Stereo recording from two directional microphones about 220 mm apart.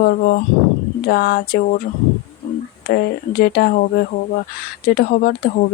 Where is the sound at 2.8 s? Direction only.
45° left (ahead or behind).